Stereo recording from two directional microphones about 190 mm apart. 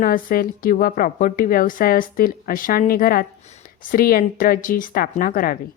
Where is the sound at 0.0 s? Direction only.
50° left (ahead or behind).